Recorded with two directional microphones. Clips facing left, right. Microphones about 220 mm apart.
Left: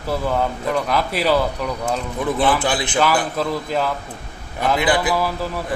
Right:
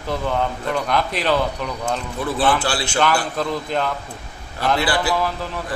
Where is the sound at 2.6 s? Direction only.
20° left (ahead or behind).